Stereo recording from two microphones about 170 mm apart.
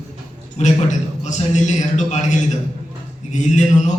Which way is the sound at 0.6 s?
45° left (ahead or behind).